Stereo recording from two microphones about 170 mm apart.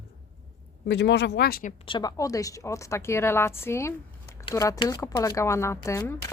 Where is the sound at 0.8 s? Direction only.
90° left; by 1.7 s 65° left (ahead or behind).